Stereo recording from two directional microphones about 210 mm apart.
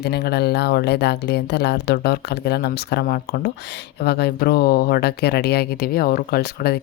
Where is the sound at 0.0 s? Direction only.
50° left (ahead or behind).